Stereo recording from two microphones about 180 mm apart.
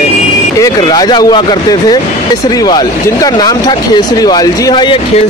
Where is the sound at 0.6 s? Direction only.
20° left (ahead or behind).